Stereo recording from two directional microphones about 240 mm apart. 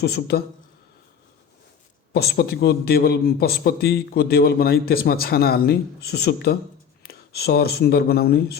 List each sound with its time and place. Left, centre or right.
0.0 s speech: left
2.1 s speech: left